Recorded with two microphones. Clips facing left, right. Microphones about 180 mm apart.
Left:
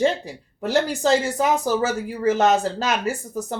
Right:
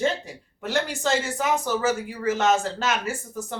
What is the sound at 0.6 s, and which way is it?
Speech, 35° left (ahead or behind).